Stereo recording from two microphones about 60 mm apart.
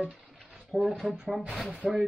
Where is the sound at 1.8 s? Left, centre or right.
Centre.